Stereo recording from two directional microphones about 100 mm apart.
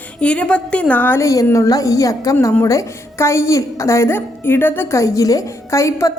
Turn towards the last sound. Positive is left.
turn(degrees=30)  # may be behind; listen again after turning